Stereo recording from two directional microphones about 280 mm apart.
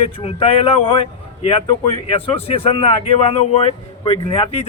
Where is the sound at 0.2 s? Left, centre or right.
Left.